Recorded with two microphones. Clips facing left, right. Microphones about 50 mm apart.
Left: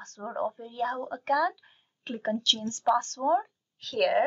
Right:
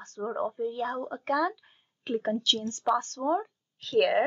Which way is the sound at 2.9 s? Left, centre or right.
Centre.